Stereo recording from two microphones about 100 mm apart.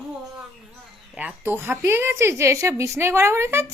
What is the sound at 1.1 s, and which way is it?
A woman's voice, 10° right (ahead or behind).